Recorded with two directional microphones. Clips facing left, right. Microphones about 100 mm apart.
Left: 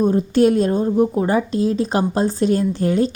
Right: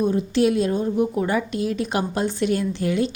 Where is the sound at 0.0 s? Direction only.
40° left (ahead or behind).